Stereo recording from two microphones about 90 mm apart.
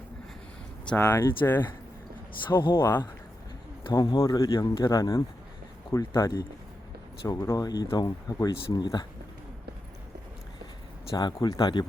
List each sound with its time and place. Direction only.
0.9 s speech: 30° left (ahead or behind)
2.7 s speech: 25° left (ahead or behind)
3.8 s speech: 65° left (ahead or behind)
4.2 s speech: 35° left (ahead or behind)
11.2 s speech: 55° left (ahead or behind)